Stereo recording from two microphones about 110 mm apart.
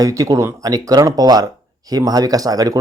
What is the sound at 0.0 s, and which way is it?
Speech, 30° right (ahead or behind).